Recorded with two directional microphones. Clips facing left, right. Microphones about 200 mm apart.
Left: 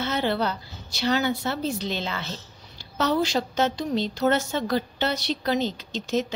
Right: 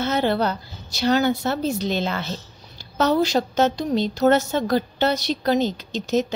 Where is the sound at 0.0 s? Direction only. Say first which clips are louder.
Right 4 dB; 45° right (ahead or behind).